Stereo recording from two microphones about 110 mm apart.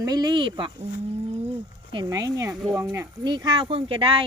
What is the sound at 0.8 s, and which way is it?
Bird, 80° right.